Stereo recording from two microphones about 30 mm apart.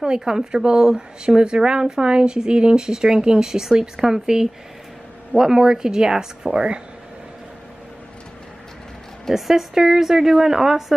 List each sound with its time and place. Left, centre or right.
0.0 s speech: right
9.3 s speech: centre